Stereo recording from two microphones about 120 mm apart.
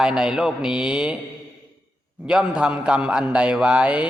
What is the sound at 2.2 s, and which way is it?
A man's voice, 10° right (ahead or behind).